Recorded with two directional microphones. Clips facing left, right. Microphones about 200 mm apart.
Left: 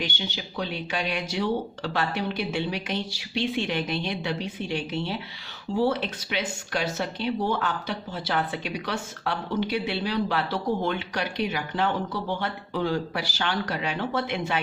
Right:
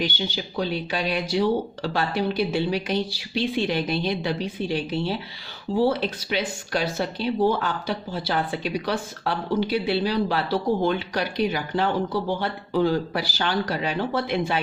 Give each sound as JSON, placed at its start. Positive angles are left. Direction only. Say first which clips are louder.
{"t": 0.0, "sound": "speech", "louder": "right 5 dB", "side_deg": -35}